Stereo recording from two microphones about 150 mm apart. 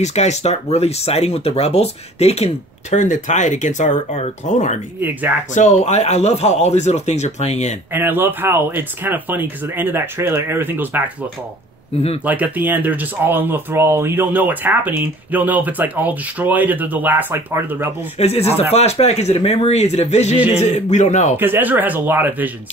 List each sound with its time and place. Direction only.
0.0 s speech: 50° left (ahead or behind)
7.9 s speech: 15° right (ahead or behind)
12.3 s speech: 10° right (ahead or behind)
18.2 s speech: 45° left (ahead or behind)
21.4 s speech: 15° right (ahead or behind)